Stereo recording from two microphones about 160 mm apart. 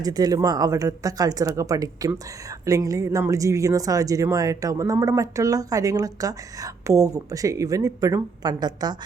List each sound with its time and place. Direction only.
0.0 s speech: 25° right (ahead or behind)